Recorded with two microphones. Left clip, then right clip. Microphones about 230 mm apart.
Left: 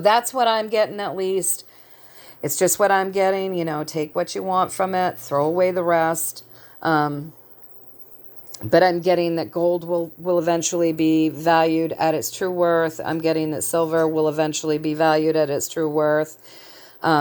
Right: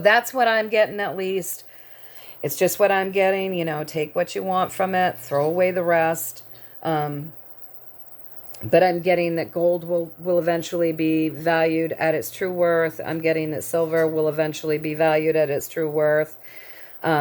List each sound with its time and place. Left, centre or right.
0.0 s speech: centre
8.5 s speech: centre